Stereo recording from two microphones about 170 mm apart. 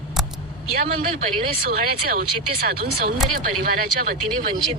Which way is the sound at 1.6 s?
60° right (ahead or behind).